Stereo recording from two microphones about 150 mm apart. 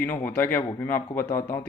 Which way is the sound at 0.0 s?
15° left (ahead or behind).